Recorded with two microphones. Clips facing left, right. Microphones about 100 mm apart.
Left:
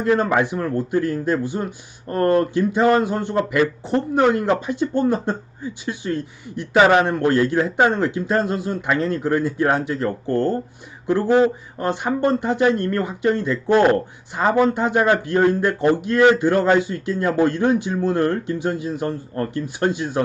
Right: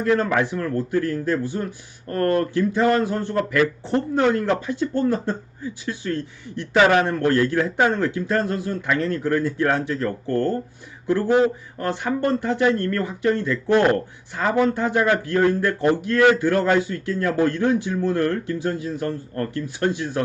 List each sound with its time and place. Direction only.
0.0 s speech: 20° left (ahead or behind)